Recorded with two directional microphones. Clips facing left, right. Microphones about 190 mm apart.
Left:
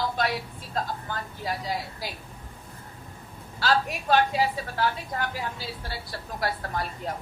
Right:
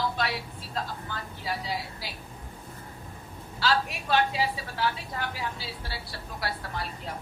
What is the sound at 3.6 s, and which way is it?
A woman's voice, 45° left (ahead or behind).